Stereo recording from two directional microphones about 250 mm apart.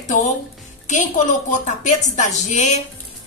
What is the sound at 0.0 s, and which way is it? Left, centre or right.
A woman's voice, left.